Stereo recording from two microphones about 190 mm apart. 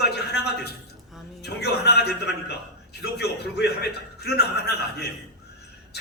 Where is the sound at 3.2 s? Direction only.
60° left (ahead or behind).